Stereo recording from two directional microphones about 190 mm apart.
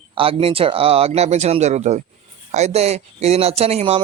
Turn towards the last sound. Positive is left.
turn(degrees=-30)  # may be behind; listen again after turning